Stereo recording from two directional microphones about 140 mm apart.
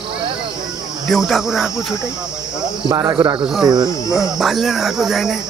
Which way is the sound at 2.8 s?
35° right (ahead or behind).